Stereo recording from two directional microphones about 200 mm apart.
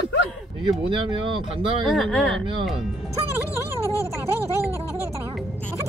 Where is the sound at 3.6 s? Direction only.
10° right (ahead or behind).